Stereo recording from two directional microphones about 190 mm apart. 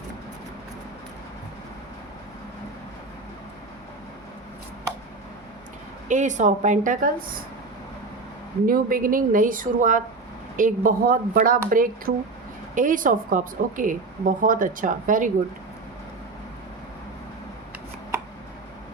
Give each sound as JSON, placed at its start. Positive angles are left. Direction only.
{"t": 6.1, "sound": "a woman's voice", "side_deg": -40}
{"t": 8.6, "sound": "a woman's voice", "side_deg": -50}